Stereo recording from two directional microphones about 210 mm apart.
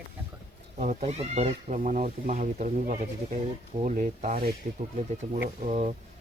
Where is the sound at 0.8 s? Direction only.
35° right (ahead or behind).